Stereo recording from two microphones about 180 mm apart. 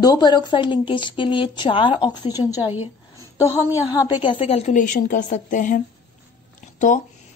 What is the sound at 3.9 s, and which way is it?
A woman's voice, 20° left (ahead or behind).